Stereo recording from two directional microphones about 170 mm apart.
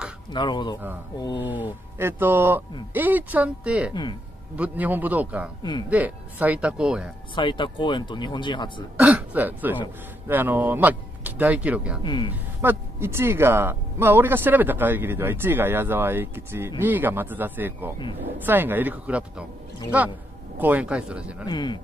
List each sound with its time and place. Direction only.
0.3 s speech: 25° left (ahead or behind)
1.4 s speech: 10° right (ahead or behind)
3.9 s speech: 25° left (ahead or behind)
4.6 s speech: 10° right (ahead or behind)
5.6 s speech: 25° left (ahead or behind)
5.9 s speech: 10° right (ahead or behind)
7.3 s speech: 30° left (ahead or behind)
8.9 s speech: 10° right (ahead or behind)
12.0 s speech: 25° left (ahead or behind)
12.6 s speech: 15° right (ahead or behind)
21.5 s speech: 25° left (ahead or behind)